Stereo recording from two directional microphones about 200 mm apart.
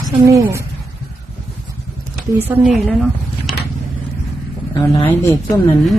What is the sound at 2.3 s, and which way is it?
Speech, 10° right (ahead or behind).